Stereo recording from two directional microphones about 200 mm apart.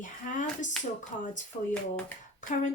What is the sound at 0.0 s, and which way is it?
Speech, 40° left (ahead or behind).